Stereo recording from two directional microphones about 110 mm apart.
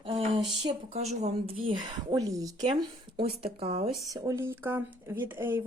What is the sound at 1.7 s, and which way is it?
Speech, 35° right (ahead or behind).